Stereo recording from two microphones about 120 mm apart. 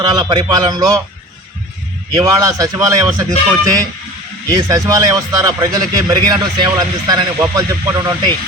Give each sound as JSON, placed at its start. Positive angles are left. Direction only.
{"t": 0.0, "sound": "speech", "side_deg": -35}
{"t": 2.1, "sound": "a man's voice", "side_deg": -30}
{"t": 4.4, "sound": "a man's voice", "side_deg": -30}